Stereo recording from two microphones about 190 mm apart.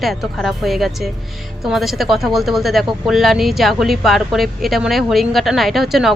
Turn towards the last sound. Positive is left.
turn(degrees=0)  # may be behind; listen again after turning